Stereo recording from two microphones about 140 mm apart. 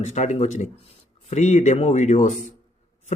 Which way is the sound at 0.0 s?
55° left (ahead or behind).